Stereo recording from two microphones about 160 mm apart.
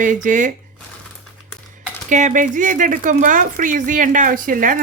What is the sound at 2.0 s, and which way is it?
Speech, 50° right (ahead or behind).